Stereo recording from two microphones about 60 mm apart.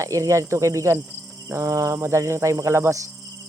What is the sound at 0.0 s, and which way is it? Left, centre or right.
Cricket, right.